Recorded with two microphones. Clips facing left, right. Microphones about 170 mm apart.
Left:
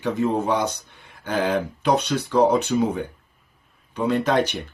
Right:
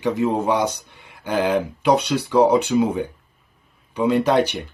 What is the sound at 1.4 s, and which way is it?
Speech, 10° right (ahead or behind).